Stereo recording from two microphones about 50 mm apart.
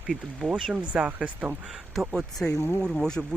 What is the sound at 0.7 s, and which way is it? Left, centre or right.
Speech, right.